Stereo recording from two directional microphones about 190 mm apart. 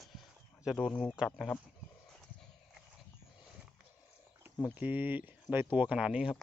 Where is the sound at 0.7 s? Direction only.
Centre (ahead or behind).